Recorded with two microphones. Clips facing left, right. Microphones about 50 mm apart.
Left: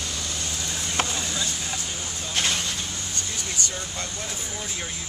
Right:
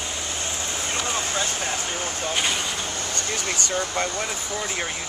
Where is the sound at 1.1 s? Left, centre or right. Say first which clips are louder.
Right 4 dB; right.